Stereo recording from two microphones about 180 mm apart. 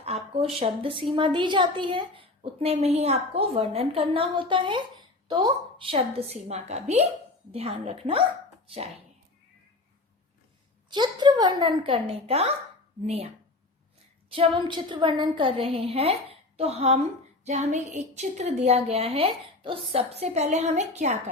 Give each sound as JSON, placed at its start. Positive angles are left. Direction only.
{"t": 0.0, "sound": "a woman's voice", "side_deg": -35}
{"t": 10.8, "sound": "a woman's voice", "side_deg": -25}
{"t": 14.3, "sound": "a woman's voice", "side_deg": -30}